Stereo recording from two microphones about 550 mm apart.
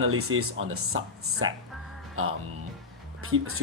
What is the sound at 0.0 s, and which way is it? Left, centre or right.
Speech, right.